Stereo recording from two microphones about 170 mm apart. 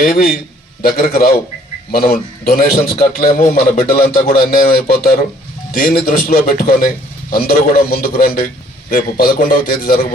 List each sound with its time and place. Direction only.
0.0 s a man's voice: 60° left (ahead or behind)